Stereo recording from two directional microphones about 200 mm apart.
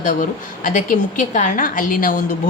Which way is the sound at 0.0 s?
40° left (ahead or behind).